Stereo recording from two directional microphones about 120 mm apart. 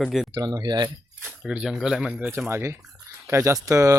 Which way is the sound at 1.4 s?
5° right (ahead or behind).